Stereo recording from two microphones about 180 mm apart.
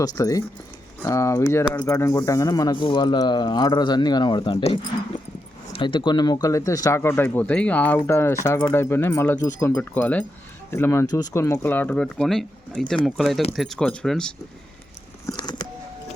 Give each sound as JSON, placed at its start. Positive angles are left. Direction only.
{"t": 0.0, "sound": "speech", "side_deg": 20}
{"t": 15.3, "sound": "speech", "side_deg": 20}